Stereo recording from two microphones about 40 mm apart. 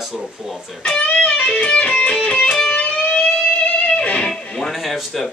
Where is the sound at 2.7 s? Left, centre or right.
Left.